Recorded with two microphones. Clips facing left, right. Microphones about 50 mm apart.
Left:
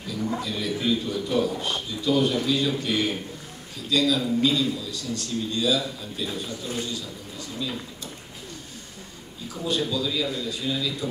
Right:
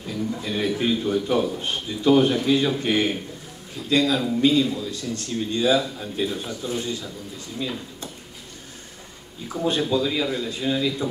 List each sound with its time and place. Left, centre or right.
0.4 s a man's voice: right
9.5 s a man's voice: right